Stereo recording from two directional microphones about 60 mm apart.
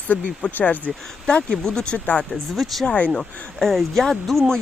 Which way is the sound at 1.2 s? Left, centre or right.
Centre.